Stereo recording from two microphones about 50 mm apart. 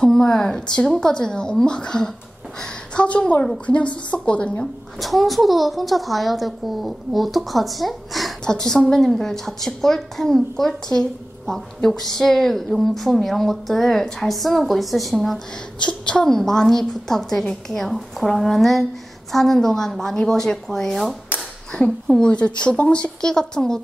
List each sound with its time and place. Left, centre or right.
0.0 s speech: centre
5.0 s a woman's voice: centre
8.5 s a woman's voice: centre
15.8 s a woman's voice: centre
22.3 s speech: left